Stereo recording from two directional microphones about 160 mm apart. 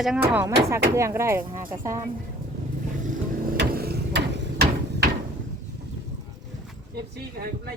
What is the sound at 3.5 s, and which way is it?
Hammer, 80° right.